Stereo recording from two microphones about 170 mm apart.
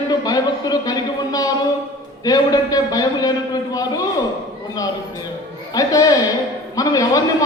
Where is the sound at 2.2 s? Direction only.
20° left (ahead or behind).